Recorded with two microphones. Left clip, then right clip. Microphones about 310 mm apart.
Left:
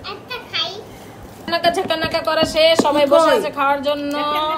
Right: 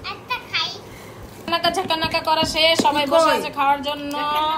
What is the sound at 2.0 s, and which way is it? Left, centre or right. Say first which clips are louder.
Speech: left 2 dB; centre.